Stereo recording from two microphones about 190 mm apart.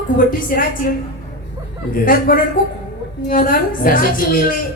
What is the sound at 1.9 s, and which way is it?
A man's voice, 50° left (ahead or behind).